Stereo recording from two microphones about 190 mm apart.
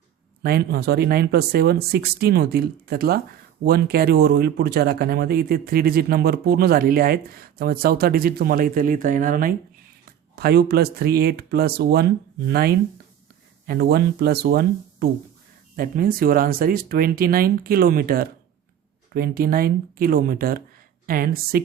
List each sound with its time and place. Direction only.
0.4 s speech: 55° right (ahead or behind)